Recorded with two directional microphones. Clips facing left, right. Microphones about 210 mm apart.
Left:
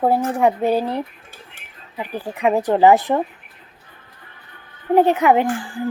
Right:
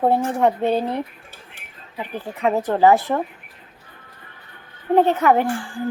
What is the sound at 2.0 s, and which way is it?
Speech, 15° left (ahead or behind).